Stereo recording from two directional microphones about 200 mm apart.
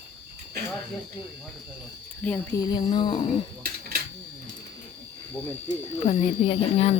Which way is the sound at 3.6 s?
50° right (ahead or behind).